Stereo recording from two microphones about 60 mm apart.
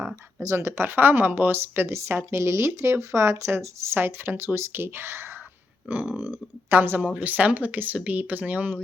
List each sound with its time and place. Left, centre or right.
0.5 s speech: right
3.9 s speech: right
5.9 s speech: right
7.0 s speech: right